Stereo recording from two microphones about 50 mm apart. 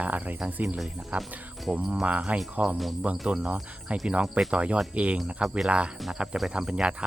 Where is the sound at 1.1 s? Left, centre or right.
Right.